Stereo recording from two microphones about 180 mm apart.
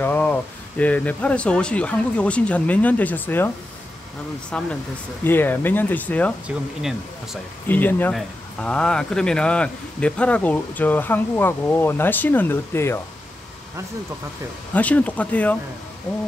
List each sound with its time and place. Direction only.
0.0 s speech: 10° left (ahead or behind)
6.4 s speech: 5° right (ahead or behind)
7.6 s speech: 10° left (ahead or behind)
14.7 s speech: 10° left (ahead or behind)